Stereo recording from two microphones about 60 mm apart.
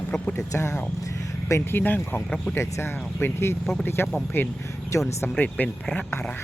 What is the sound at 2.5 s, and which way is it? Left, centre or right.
Speech, left.